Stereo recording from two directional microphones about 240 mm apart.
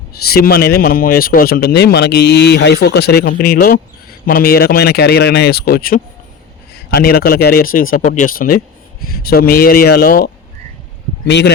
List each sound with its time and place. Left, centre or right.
0.3 s a man's voice: left